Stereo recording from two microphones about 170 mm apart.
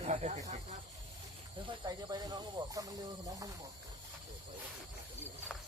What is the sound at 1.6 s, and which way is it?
Speech, 25° right (ahead or behind).